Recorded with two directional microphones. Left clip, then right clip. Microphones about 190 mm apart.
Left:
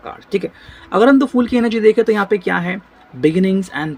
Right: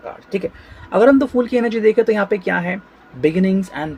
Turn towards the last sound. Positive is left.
turn(degrees=45)  # may be behind; listen again after turning